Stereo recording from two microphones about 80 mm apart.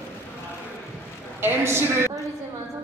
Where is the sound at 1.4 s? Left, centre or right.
Right.